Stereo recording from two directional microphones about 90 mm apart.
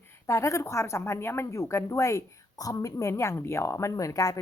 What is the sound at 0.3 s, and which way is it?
A woman's voice, 35° left (ahead or behind).